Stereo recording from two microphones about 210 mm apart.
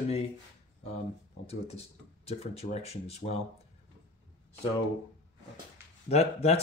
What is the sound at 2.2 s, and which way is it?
Speech, 30° left (ahead or behind).